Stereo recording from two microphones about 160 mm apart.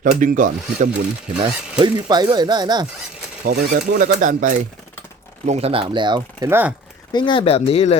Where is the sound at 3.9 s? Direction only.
55° right (ahead or behind).